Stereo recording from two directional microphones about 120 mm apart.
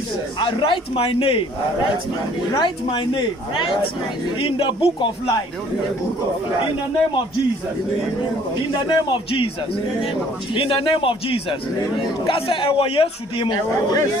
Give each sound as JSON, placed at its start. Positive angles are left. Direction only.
{"t": 0.4, "sound": "a man's voice", "side_deg": 45}
{"t": 2.6, "sound": "a man's voice", "side_deg": 40}
{"t": 8.8, "sound": "a man's voice", "side_deg": 45}
{"t": 10.5, "sound": "a man's voice", "side_deg": 45}
{"t": 13.5, "sound": "speech", "side_deg": 35}